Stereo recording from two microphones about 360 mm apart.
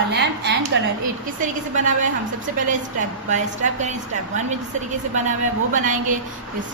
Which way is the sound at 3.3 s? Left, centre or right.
Centre.